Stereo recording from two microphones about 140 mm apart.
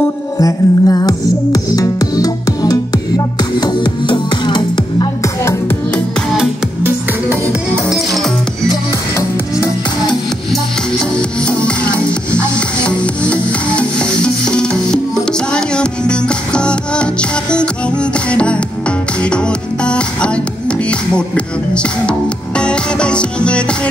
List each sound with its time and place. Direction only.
0.4 s music: 25° left (ahead or behind)
12.5 s music: 10° left (ahead or behind)